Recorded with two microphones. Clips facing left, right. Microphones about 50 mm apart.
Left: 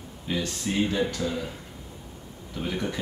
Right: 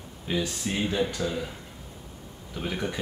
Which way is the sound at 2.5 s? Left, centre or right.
Centre.